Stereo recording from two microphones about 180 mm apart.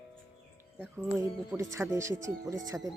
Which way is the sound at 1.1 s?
20° right (ahead or behind).